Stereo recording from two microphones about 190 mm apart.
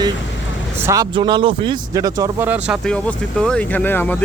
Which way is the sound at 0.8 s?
15° right (ahead or behind).